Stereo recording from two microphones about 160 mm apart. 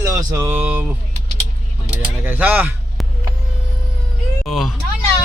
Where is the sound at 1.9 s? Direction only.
10° right (ahead or behind).